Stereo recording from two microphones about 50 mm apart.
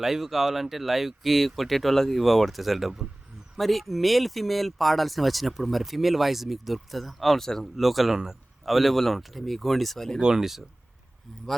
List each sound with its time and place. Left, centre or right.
0.0 s speech: centre
10.2 s speech: centre